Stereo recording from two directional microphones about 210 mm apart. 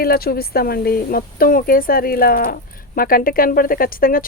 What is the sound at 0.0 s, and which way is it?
Speech, 45° left (ahead or behind).